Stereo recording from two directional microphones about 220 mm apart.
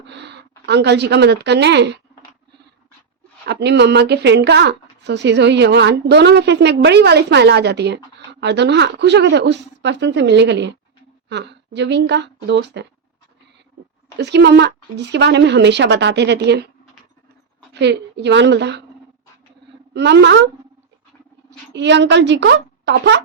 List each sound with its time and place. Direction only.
0.1 s a woman's voice: 50° right (ahead or behind)
3.4 s a woman's voice: 50° right (ahead or behind)
14.2 s a woman's voice: 50° right (ahead or behind)
17.7 s a woman's voice: 50° right (ahead or behind)
19.9 s a woman's voice: 50° right (ahead or behind)
21.7 s a woman's voice: 50° right (ahead or behind)